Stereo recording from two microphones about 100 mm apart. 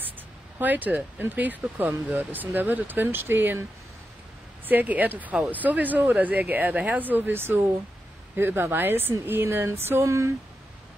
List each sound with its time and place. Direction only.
0.6 s speech: 15° right (ahead or behind)
4.6 s speech: 15° right (ahead or behind)